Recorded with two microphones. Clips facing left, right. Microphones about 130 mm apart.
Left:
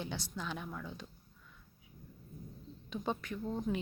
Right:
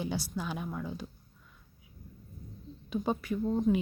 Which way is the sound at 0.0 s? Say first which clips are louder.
Right 6 dB; 10° right (ahead or behind).